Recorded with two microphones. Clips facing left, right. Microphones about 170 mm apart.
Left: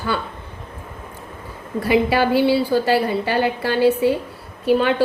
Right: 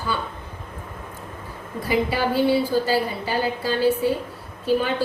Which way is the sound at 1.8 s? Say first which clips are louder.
Left 5 dB; 70° left (ahead or behind).